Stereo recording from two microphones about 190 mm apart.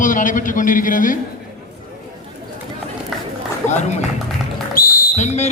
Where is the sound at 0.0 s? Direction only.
45° left (ahead or behind).